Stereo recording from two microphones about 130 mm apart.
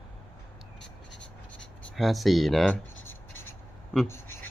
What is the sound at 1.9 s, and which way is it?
Speech, centre (ahead or behind).